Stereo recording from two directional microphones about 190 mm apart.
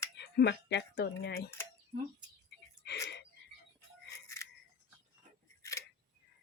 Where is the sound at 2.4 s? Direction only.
65° left (ahead or behind).